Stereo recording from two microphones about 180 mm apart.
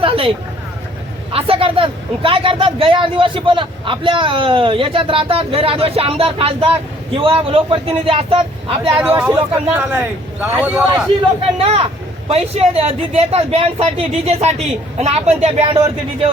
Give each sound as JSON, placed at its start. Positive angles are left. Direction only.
{"t": 0.0, "sound": "a sound", "side_deg": -30}
{"t": 1.3, "sound": "speech", "side_deg": -30}
{"t": 9.0, "sound": "speech", "side_deg": -5}
{"t": 11.5, "sound": "speech", "side_deg": -35}